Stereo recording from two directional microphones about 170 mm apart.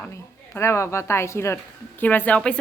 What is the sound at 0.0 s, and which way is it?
A woman's voice, 15° left (ahead or behind).